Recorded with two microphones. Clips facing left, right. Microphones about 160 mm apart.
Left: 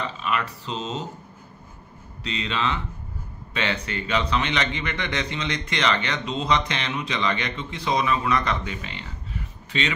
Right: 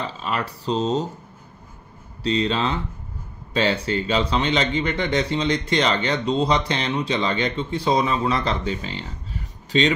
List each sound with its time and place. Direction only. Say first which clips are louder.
0.0 s a man's voice: right 1 dB; 35° right (ahead or behind)
2.2 s a man's voice: right 6 dB; 35° right (ahead or behind)